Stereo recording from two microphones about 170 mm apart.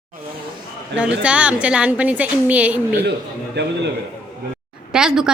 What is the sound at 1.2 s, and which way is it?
A woman's voice, 5° right (ahead or behind).